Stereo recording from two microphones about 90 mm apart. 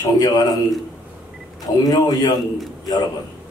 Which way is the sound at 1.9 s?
50° left (ahead or behind).